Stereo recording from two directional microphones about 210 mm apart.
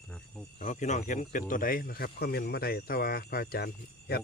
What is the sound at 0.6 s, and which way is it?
Speech, 35° left (ahead or behind).